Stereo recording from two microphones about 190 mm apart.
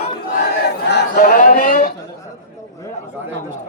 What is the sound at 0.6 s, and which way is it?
Battle cry, 65° left (ahead or behind).